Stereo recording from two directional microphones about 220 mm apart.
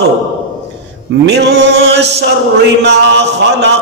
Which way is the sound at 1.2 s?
50° right (ahead or behind).